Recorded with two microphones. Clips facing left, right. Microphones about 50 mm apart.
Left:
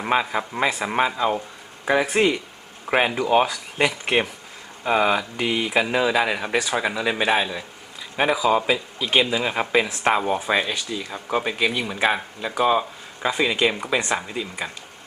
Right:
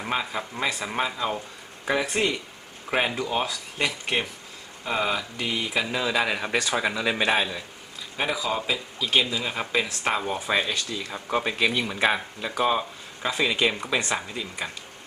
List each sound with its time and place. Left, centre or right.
0.0 s a man's voice: left
6.1 s a man's voice: centre
8.2 s a man's voice: centre